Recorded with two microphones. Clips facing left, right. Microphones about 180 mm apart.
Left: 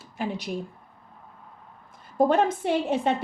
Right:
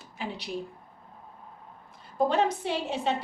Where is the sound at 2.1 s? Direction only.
50° left (ahead or behind).